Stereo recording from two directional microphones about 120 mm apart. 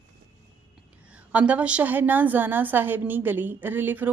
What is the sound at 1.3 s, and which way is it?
Speech, 10° right (ahead or behind).